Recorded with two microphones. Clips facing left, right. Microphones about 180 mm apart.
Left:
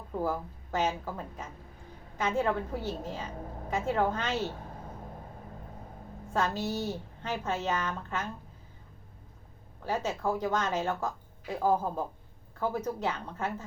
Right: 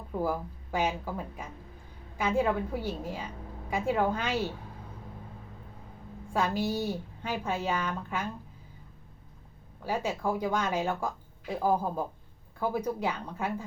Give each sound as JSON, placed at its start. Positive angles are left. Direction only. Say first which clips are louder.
{"t": 0.1, "sound": "a woman's voice", "louder": "right 1 dB", "side_deg": -10}
{"t": 4.4, "sound": "a sound", "louder": "even", "side_deg": 45}
{"t": 6.3, "sound": "a woman's voice", "louder": "right 2 dB", "side_deg": -10}
{"t": 9.8, "sound": "a woman's voice", "louder": "even", "side_deg": -10}